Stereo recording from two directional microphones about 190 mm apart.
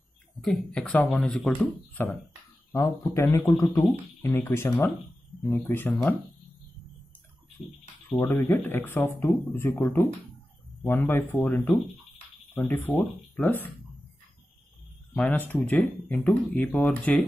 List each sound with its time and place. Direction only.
0.4 s speech: 5° left (ahead or behind)
8.2 s speech: 15° left (ahead or behind)
10.8 s speech: 15° left (ahead or behind)
11.4 s speech: 5° left (ahead or behind)
15.1 s speech: 5° left (ahead or behind)